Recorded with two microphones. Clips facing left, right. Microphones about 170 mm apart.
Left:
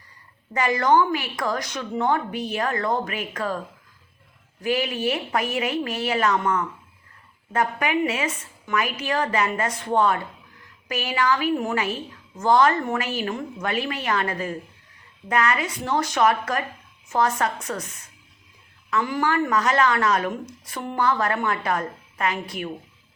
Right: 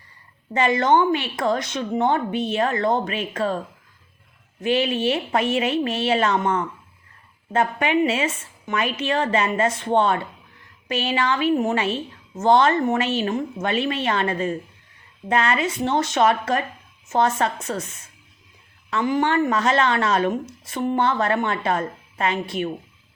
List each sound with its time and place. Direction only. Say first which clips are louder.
0.5 s a woman's voice: right 1 dB; 25° right (ahead or behind)
4.6 s a woman's voice: right 3 dB; 25° right (ahead or behind)